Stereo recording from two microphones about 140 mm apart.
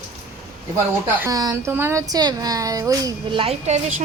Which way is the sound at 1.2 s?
25° right (ahead or behind).